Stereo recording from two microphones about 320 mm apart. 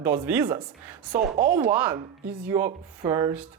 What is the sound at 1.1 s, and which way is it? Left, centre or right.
Speech, right.